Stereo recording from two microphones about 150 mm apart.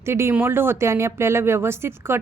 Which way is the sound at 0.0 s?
15° right (ahead or behind).